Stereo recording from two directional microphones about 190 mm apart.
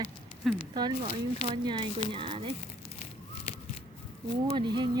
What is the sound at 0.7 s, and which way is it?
Speech, 25° right (ahead or behind).